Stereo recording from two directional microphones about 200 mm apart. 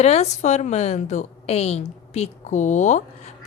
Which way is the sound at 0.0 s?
35° left (ahead or behind).